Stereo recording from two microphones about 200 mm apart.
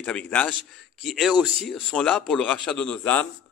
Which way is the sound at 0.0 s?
5° left (ahead or behind).